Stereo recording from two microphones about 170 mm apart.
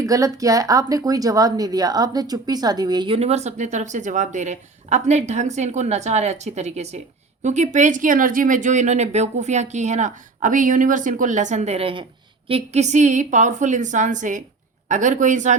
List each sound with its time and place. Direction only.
0.0 s speech: 20° right (ahead or behind); by 15.5 s 45° right (ahead or behind)